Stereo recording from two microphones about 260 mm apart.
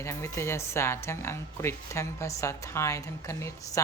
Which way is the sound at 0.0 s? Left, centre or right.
Centre.